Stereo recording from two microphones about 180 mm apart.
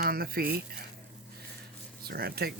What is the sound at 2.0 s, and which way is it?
Speech, 60° right (ahead or behind).